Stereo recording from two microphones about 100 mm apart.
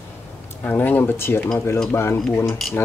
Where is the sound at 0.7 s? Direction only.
20° left (ahead or behind).